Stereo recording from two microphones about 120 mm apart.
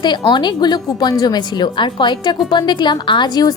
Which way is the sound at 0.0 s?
40° left (ahead or behind).